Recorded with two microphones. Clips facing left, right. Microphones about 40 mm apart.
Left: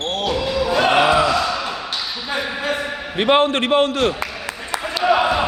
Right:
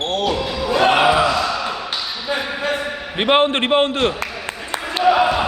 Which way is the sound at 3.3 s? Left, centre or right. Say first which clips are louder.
Right 1 dB; right.